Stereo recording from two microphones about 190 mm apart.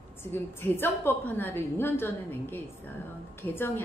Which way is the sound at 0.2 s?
10° left (ahead or behind).